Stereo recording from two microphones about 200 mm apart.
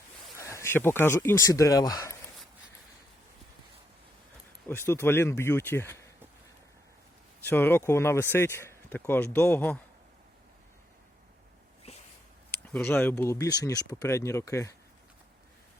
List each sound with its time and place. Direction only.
0.3 s speech: 15° left (ahead or behind)
4.7 s speech: 10° left (ahead or behind)
7.4 s speech: 10° left (ahead or behind)
11.8 s a sound: 30° left (ahead or behind)
12.5 s speech: 5° left (ahead or behind)